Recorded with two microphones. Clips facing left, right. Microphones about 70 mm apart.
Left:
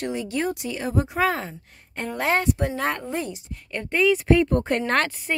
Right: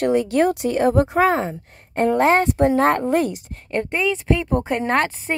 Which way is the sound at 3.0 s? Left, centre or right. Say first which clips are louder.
Right 10 dB; right.